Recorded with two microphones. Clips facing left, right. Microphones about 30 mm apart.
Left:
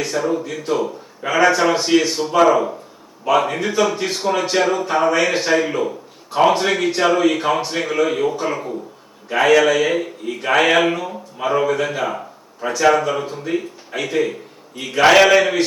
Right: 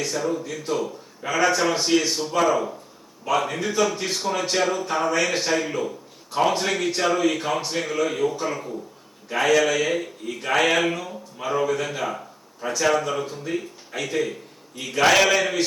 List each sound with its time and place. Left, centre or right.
0.0 s a man's voice: centre